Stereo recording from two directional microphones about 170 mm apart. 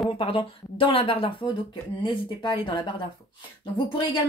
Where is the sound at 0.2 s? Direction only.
30° left (ahead or behind).